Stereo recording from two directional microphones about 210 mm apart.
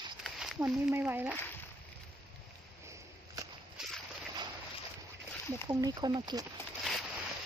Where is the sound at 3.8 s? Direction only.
5° right (ahead or behind).